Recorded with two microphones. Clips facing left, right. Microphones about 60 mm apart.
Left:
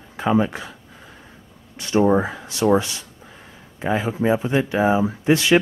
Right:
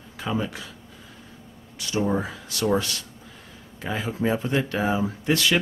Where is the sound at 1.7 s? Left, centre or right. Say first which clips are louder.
Left 8 dB; left.